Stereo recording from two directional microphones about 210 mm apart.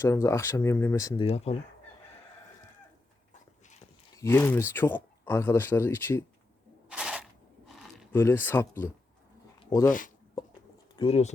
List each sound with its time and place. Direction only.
0.0 s speech: 15° left (ahead or behind)
4.2 s speech: 10° left (ahead or behind)
6.8 s a sound: 5° right (ahead or behind)
8.1 s speech: 10° left (ahead or behind)
9.6 s a sound: 15° left (ahead or behind)
10.9 s speech: 30° left (ahead or behind)